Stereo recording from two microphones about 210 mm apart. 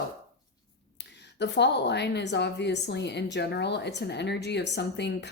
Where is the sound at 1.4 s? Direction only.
55° left (ahead or behind).